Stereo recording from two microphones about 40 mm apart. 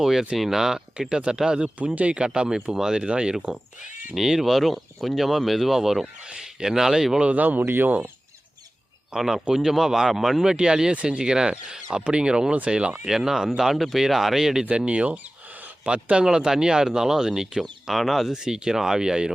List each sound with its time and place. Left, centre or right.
0.0 s speech: centre
1.1 s speech: right
2.0 s speech: right
2.2 s speech: centre
4.1 s speech: centre
7.3 s speech: right
7.6 s speech: right
9.1 s speech: centre
10.4 s speech: centre
13.1 s speech: centre
14.6 s speech: right
16.2 s speech: centre
17.9 s speech: centre
18.3 s speech: centre